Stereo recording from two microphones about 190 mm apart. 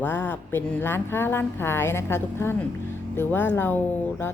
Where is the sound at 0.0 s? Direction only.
10° left (ahead or behind).